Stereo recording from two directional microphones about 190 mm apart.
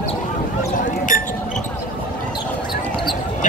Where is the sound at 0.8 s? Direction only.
45° left (ahead or behind).